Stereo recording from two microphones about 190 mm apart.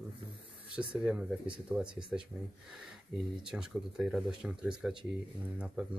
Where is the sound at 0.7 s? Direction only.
5° right (ahead or behind).